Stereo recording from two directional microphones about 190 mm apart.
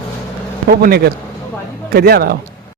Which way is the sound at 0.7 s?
55° right (ahead or behind).